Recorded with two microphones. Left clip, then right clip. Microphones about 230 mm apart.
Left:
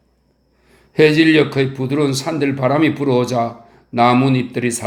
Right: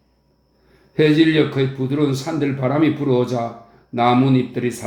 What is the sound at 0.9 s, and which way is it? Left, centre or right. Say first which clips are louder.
Speech: left 4 dB; left.